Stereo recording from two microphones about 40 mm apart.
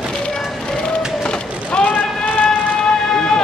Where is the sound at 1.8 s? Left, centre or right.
Left.